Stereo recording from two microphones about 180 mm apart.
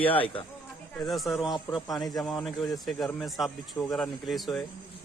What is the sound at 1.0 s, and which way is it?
Speech, centre (ahead or behind).